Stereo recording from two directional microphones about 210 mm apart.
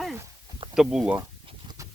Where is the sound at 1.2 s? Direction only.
20° right (ahead or behind).